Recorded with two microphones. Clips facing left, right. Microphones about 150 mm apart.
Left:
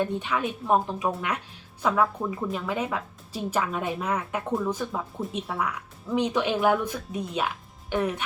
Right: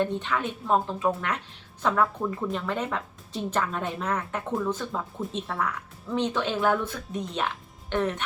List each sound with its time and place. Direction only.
0.0 s a woman's voice: 10° left (ahead or behind)